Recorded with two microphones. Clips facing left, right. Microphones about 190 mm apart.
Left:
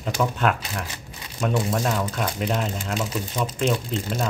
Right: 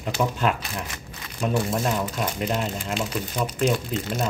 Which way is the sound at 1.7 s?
10° right (ahead or behind).